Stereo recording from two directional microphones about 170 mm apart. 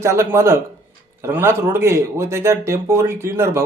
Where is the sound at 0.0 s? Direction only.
15° right (ahead or behind).